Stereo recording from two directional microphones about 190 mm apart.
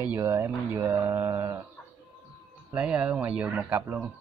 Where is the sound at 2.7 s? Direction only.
5° right (ahead or behind).